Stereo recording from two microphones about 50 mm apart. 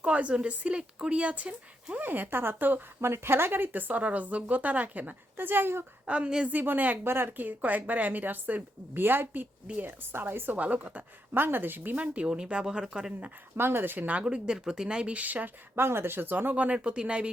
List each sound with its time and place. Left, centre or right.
0.0 s speech: right
2.0 s speech: right
3.0 s speech: right
6.1 s speech: right
6.5 s speech: right
7.0 s speech: right
7.4 s speech: right
10.6 s speech: right
11.3 s speech: right
12.1 s speech: right
13.6 s speech: right
14.2 s speech: right
15.7 s speech: right
16.6 s speech: right